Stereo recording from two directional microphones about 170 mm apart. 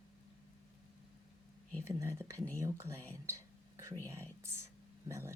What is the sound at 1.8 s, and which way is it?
Speech, 15° right (ahead or behind).